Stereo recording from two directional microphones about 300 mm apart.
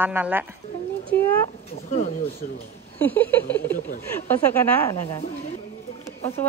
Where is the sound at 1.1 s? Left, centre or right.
Centre.